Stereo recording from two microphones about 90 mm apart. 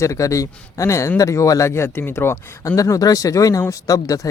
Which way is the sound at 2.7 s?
40° left (ahead or behind).